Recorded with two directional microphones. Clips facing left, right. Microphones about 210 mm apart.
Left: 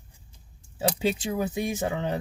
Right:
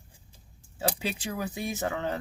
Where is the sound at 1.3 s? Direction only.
25° left (ahead or behind).